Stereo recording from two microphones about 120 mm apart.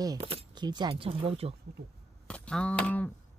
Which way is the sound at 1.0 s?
50° right (ahead or behind).